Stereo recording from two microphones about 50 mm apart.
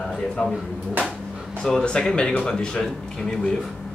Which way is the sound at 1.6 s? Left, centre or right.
Centre.